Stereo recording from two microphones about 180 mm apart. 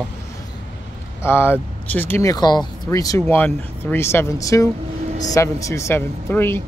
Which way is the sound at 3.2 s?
10° left (ahead or behind).